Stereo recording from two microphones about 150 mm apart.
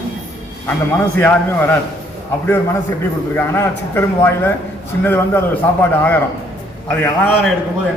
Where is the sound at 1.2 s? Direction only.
10° left (ahead or behind).